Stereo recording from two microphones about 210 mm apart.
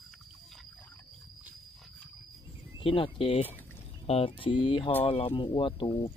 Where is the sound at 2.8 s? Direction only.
25° left (ahead or behind).